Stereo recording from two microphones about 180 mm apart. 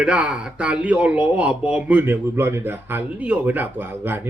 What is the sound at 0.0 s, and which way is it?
Speech, 5° right (ahead or behind).